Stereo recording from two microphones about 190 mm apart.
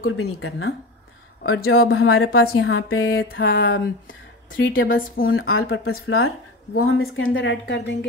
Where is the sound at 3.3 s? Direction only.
75° left (ahead or behind).